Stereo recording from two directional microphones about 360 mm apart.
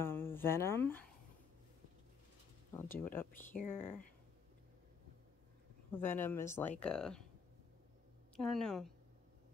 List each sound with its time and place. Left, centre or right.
0.0 s a sound: centre
2.7 s speech: centre
3.3 s speech: left
5.9 s speech: centre
8.4 s speech: centre